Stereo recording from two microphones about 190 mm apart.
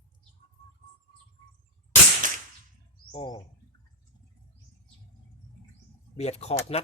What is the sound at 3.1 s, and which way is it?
Bird, 25° left (ahead or behind).